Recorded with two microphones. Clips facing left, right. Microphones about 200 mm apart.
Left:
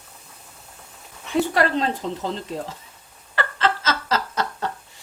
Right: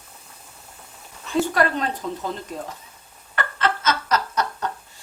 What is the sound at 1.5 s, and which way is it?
Speech, 25° left (ahead or behind).